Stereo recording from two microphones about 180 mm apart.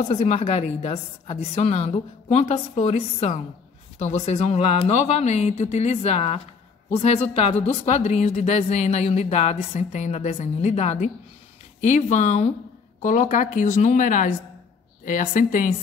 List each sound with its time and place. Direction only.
0.1 s speech: 35° left (ahead or behind)